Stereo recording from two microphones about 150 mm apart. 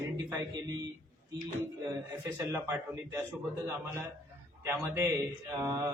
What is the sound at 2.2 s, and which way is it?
A man's voice, 15° right (ahead or behind).